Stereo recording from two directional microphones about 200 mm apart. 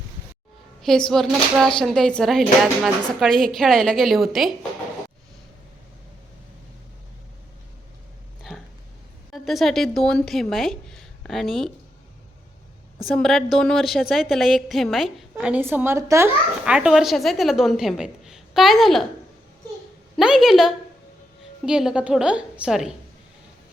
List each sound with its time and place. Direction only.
0.8 s a woman's voice: 5° left (ahead or behind)
8.4 s a sound: centre (ahead or behind)
9.3 s a woman's voice: centre (ahead or behind)
13.1 s a woman's voice: centre (ahead or behind)
20.1 s a woman's voice: centre (ahead or behind)